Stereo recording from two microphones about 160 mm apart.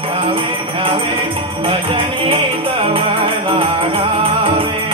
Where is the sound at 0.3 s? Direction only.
35° right (ahead or behind).